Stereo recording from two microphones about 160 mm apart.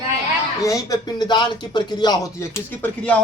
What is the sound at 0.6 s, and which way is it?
Speech, 20° left (ahead or behind).